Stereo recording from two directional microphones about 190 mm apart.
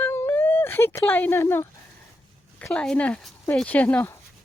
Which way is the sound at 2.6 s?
5° left (ahead or behind).